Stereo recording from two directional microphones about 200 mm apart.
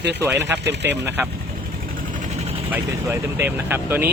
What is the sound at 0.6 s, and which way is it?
Speech, 60° right (ahead or behind).